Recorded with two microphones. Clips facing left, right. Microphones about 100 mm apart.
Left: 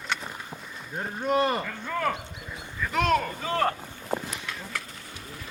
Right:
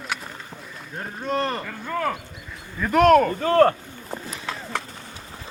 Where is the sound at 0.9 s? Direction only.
10° left (ahead or behind).